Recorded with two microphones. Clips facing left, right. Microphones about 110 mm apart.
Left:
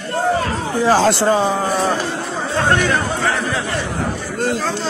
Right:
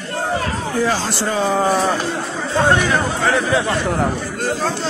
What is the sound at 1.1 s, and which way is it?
Speech, 30° left (ahead or behind).